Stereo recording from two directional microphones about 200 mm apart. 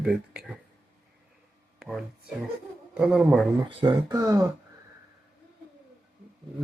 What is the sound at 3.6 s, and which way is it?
Speech, 20° right (ahead or behind).